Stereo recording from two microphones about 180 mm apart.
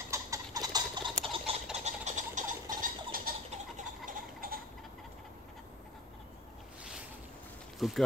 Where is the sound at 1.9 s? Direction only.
40° right (ahead or behind).